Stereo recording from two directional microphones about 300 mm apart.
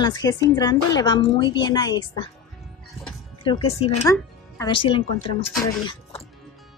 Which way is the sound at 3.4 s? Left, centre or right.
Centre.